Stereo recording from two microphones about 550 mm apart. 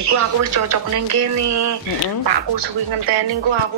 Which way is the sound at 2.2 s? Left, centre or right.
Right.